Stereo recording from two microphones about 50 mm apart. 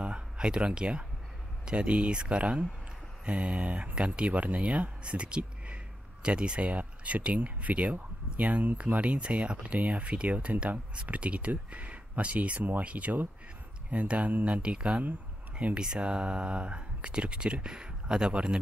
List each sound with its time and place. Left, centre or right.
0.0 s speech: centre